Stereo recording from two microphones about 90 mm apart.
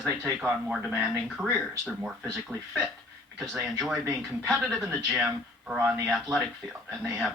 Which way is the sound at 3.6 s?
10° right (ahead or behind).